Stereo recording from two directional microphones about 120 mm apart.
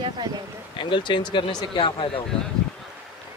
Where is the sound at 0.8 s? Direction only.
45° left (ahead or behind).